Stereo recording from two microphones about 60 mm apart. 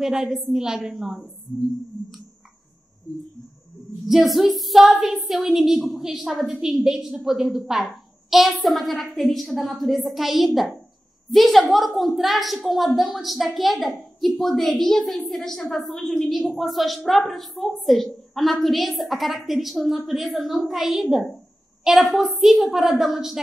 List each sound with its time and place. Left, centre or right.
0.0 s a woman's voice: centre
4.1 s a woman's voice: centre